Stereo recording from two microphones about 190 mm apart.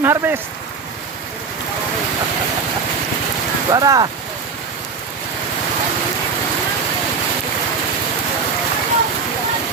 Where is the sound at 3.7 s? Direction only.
20° right (ahead or behind).